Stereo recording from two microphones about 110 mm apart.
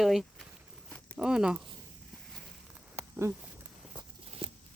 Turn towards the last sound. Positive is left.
turn(degrees=-55)  # may be behind; listen again after turning